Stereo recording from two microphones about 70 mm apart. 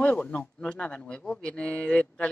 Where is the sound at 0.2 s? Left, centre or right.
Centre.